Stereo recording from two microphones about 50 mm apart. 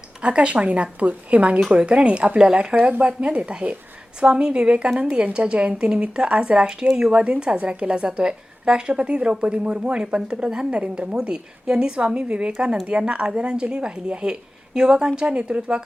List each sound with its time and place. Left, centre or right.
0.2 s a woman's voice: right